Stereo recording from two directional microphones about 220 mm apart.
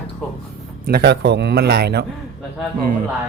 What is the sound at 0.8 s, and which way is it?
A man's voice, 45° right (ahead or behind).